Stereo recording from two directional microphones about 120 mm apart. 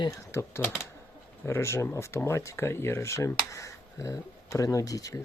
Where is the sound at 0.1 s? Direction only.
25° left (ahead or behind).